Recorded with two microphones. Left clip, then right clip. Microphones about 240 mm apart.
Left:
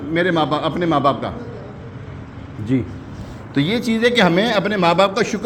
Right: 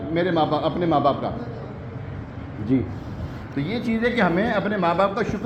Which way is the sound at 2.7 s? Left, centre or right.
Left.